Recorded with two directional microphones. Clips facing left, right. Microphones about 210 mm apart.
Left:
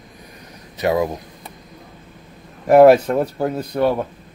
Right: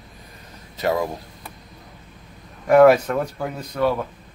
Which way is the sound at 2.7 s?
30° left (ahead or behind).